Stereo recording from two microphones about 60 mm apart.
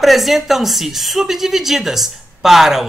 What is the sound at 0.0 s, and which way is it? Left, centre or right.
A woman's voice, centre.